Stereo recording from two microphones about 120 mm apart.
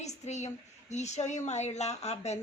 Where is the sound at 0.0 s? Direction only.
70° left (ahead or behind).